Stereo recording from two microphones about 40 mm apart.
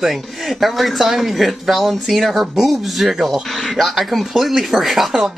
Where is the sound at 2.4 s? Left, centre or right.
Centre.